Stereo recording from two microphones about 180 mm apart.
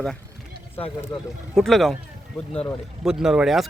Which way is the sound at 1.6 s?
Centre (ahead or behind).